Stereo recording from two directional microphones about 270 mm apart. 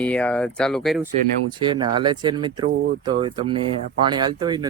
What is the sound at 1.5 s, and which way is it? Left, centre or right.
Speech, centre.